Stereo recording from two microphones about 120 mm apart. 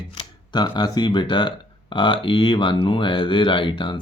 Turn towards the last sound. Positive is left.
turn(degrees=40)  # may be behind; listen again after turning